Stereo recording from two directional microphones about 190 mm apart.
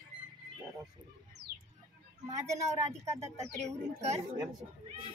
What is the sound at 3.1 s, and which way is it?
Speech, 15° right (ahead or behind).